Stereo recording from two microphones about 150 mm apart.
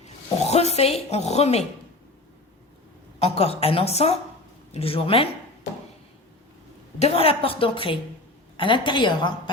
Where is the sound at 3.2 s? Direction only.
40° left (ahead or behind).